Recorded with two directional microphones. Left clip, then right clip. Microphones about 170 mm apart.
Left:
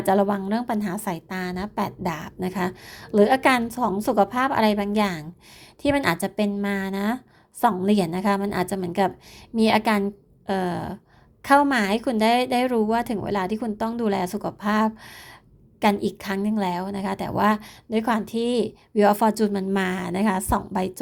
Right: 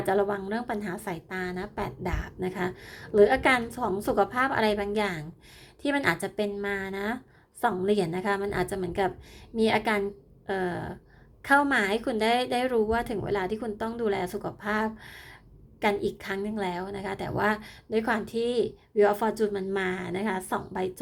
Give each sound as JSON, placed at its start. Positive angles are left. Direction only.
{"t": 0.0, "sound": "a woman's voice", "side_deg": 30}